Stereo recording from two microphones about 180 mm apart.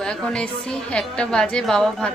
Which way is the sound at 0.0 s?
5° left (ahead or behind).